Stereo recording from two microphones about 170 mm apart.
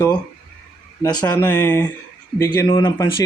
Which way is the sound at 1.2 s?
15° left (ahead or behind).